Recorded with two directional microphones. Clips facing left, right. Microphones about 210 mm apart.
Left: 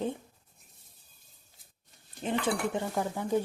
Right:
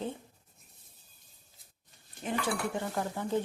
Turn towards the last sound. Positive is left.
turn(degrees=10)  # may be behind; listen again after turning